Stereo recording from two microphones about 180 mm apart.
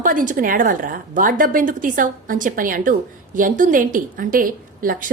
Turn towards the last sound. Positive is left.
turn(degrees=-50)  # may be behind; listen again after turning